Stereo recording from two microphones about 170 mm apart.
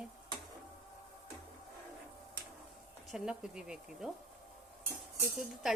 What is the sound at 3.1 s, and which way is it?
Speech, 5° right (ahead or behind).